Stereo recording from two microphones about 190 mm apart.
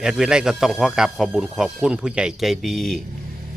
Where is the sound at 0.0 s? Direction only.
5° right (ahead or behind).